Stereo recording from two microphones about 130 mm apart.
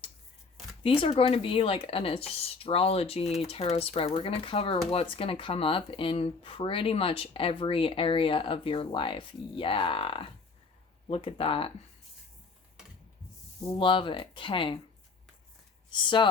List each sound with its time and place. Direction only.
0.8 s speech: 45° left (ahead or behind)
13.7 s speech: 40° left (ahead or behind)
15.9 s speech: 40° left (ahead or behind)